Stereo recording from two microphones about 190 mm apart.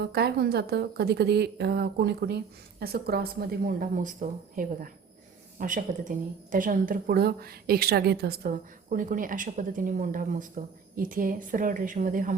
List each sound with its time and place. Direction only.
0.0 s a woman's voice: 60° right (ahead or behind)
3.8 s a woman's voice: 45° right (ahead or behind)